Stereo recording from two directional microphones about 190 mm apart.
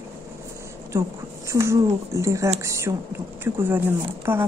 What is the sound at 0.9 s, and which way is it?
A woman's voice, 15° right (ahead or behind).